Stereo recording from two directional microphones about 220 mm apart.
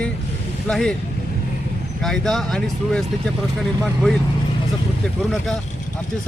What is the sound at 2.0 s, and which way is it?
Speech, centre (ahead or behind).